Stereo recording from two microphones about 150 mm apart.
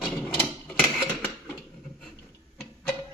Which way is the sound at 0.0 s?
5° left (ahead or behind).